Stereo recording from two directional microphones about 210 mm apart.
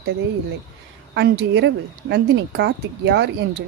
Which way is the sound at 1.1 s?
55° right (ahead or behind).